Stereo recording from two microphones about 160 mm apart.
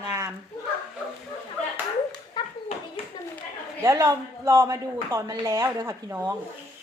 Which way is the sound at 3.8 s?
20° right (ahead or behind).